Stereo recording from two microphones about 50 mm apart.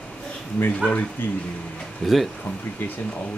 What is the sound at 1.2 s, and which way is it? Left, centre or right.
Speech, left.